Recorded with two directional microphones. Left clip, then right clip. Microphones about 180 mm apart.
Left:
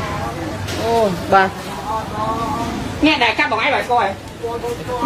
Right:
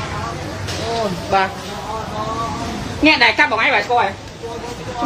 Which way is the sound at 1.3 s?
45° left (ahead or behind).